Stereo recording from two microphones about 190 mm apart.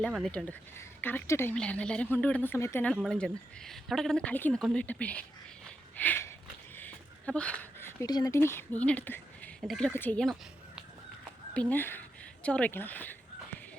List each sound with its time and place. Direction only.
0.0 s a woman's voice: 5° left (ahead or behind)
2.9 s speech: 5° left (ahead or behind)
6.0 s a sound: 10° left (ahead or behind)
9.6 s a woman's voice: centre (ahead or behind)
11.5 s speech: 10° left (ahead or behind)